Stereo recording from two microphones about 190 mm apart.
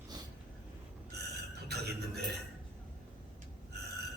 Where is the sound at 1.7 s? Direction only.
60° right (ahead or behind).